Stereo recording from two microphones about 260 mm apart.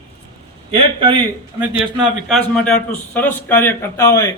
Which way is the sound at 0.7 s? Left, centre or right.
Centre.